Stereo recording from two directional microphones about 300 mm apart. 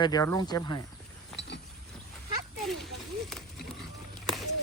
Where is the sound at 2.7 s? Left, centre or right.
Centre.